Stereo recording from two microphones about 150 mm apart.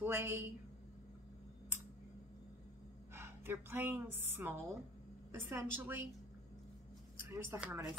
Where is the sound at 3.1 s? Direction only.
15° right (ahead or behind).